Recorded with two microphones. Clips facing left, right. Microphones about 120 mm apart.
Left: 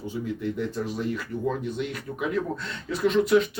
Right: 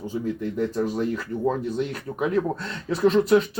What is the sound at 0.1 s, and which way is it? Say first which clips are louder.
Speech: right 2 dB; 40° right (ahead or behind).